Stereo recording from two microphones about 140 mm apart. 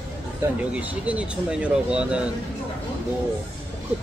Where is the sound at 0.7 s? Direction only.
10° right (ahead or behind).